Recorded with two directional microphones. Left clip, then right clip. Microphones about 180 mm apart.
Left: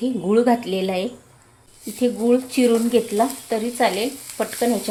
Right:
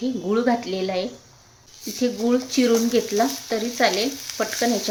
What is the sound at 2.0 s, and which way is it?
Speech, 10° left (ahead or behind).